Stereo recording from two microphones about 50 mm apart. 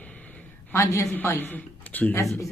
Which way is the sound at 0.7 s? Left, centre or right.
Left.